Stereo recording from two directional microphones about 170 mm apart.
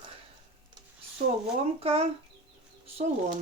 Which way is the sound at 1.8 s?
35° right (ahead or behind).